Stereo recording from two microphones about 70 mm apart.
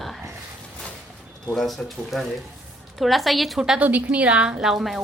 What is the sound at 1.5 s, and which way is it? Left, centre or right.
A child's voice, centre.